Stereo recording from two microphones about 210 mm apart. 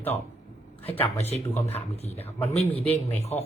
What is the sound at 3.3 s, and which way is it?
Speech, 30° left (ahead or behind).